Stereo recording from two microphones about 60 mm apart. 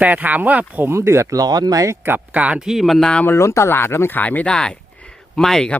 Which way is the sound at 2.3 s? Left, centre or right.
Right.